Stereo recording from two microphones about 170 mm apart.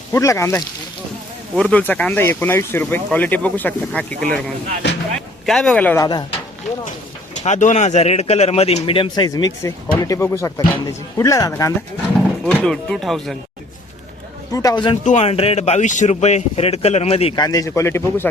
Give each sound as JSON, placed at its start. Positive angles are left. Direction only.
{"t": 0.1, "sound": "speech", "side_deg": 15}
{"t": 1.5, "sound": "speech", "side_deg": 5}
{"t": 6.0, "sound": "speech", "side_deg": 25}
{"t": 7.4, "sound": "speech", "side_deg": 45}
{"t": 12.5, "sound": "speech", "side_deg": 5}
{"t": 14.5, "sound": "speech", "side_deg": 20}
{"t": 15.0, "sound": "speech", "side_deg": 40}
{"t": 17.3, "sound": "speech", "side_deg": 20}